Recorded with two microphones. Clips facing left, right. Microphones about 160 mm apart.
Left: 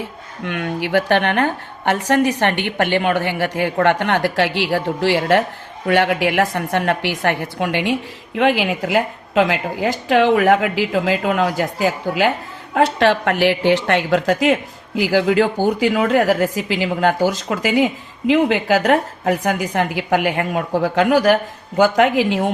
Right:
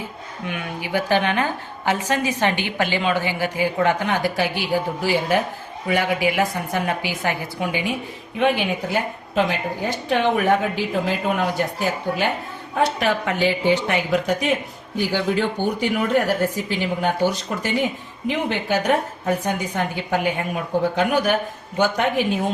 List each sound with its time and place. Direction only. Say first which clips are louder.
0.4 s a woman's voice: left 6 dB; 70° left (ahead or behind)
8.4 s a woman's voice: left 3 dB; 90° left